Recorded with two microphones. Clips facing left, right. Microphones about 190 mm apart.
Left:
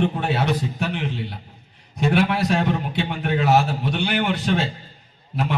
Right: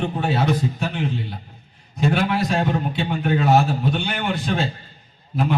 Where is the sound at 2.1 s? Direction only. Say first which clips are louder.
Left 4 dB; 65° left (ahead or behind).